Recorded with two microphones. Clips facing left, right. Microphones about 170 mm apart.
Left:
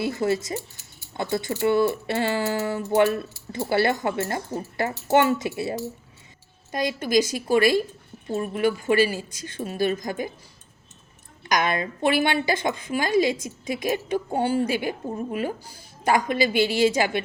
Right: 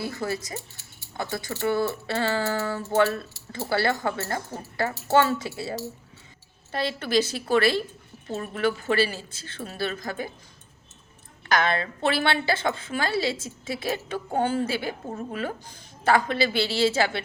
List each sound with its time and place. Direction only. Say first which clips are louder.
0.0 s a woman's voice: left 6 dB; 25° left (ahead or behind)
11.4 s a woman's voice: even; 15° left (ahead or behind)